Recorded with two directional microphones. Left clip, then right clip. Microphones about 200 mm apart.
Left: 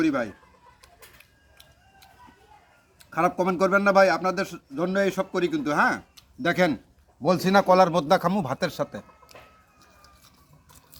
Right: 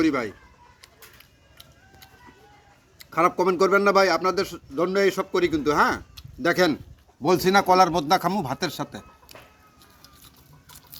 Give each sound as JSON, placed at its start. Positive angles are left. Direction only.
{"t": 0.0, "sound": "speech", "side_deg": 20}
{"t": 0.8, "sound": "bird", "side_deg": 15}
{"t": 3.0, "sound": "speech", "side_deg": 20}
{"t": 10.0, "sound": "chicken", "side_deg": 10}